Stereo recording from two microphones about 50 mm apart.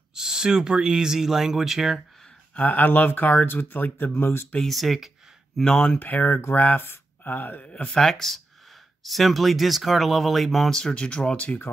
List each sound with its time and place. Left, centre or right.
0.1 s speech: centre
2.6 s speech: left
4.1 s speech: left
4.6 s speech: centre
5.8 s speech: left
7.6 s speech: left
7.9 s speech: centre
11.0 s speech: centre